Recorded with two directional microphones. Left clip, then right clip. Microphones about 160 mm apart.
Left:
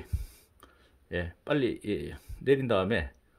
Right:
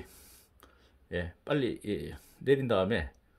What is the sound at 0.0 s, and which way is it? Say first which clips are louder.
Speech: left 2 dB; 20° left (ahead or behind).